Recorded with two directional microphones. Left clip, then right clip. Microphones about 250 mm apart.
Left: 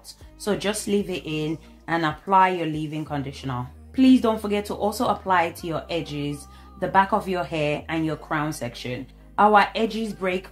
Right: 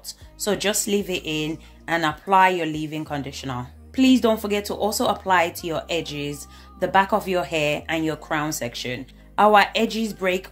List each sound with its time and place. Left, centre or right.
0.0 s speech: right